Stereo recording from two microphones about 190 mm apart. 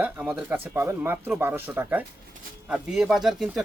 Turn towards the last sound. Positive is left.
turn(degrees=0)  # may be behind; listen again after turning